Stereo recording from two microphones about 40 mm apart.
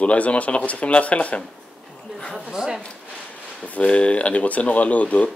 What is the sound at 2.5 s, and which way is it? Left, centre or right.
Speech, centre.